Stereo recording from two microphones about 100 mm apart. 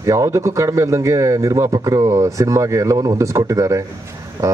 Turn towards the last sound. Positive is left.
turn(degrees=-40)  # may be behind; listen again after turning